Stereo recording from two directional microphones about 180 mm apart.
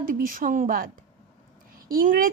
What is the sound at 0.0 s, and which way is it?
Speech, 50° right (ahead or behind).